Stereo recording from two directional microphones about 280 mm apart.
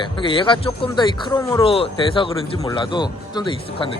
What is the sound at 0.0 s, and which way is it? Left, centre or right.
Speech, centre.